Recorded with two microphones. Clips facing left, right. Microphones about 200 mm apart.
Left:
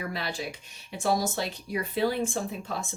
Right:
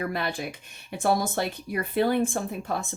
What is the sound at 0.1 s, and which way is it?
Speech, 55° right (ahead or behind).